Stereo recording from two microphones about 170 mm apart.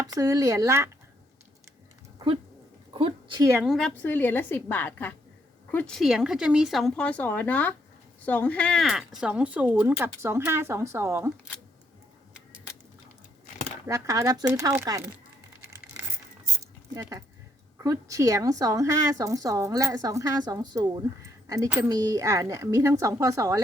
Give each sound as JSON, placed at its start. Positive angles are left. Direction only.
{"t": 0.1, "sound": "a woman's voice", "side_deg": -20}
{"t": 2.1, "sound": "dog", "side_deg": -30}
{"t": 2.9, "sound": "a woman's voice", "side_deg": -30}
{"t": 3.6, "sound": "a woman's voice", "side_deg": 0}
{"t": 13.8, "sound": "a woman's voice", "side_deg": -20}
{"t": 16.9, "sound": "a woman's voice", "side_deg": -20}